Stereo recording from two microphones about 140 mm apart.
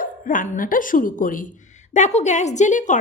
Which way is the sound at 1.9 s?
55° left (ahead or behind).